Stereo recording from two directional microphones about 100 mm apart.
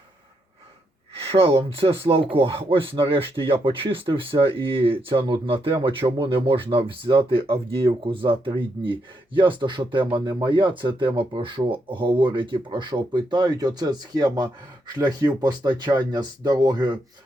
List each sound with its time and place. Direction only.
1.1 s speech: 80° right; by 17.0 s 45° right (ahead or behind)